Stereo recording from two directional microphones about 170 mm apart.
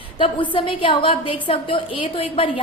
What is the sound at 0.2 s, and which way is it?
A woman's voice, 30° left (ahead or behind).